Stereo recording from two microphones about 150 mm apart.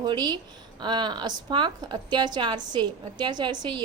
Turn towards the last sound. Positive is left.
turn(degrees=-30)  # may be behind; listen again after turning